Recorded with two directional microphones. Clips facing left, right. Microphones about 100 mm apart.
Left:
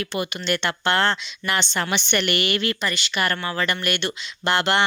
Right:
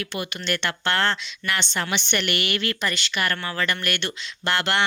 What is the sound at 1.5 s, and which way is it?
Speech, 25° left (ahead or behind).